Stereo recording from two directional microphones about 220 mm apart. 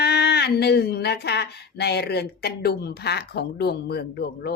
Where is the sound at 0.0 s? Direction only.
45° left (ahead or behind).